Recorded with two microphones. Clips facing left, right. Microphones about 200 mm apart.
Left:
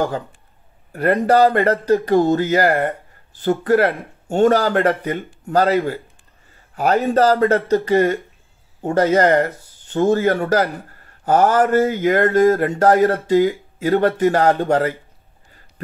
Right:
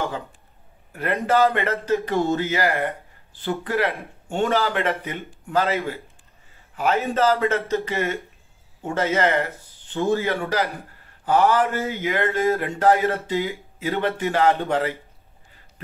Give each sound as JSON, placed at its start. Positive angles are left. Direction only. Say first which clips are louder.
{"t": 0.9, "sound": "speech", "louder": "left 6 dB", "side_deg": 40}
{"t": 6.7, "sound": "a sound", "louder": "left 5 dB", "side_deg": 35}
{"t": 7.1, "sound": "speech", "louder": "left 7 dB", "side_deg": 35}
{"t": 9.4, "sound": "speech", "louder": "left 7 dB", "side_deg": 45}
{"t": 14.2, "sound": "speech", "louder": "left 5 dB", "side_deg": 35}